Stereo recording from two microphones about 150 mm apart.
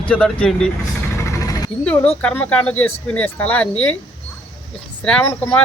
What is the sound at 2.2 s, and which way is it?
Speech, 10° left (ahead or behind).